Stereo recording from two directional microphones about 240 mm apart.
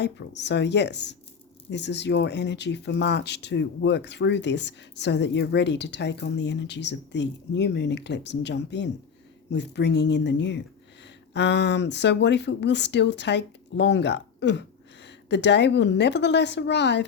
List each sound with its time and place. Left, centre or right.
0.0 s speech: left